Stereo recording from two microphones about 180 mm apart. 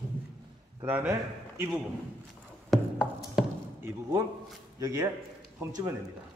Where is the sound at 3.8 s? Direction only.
20° right (ahead or behind).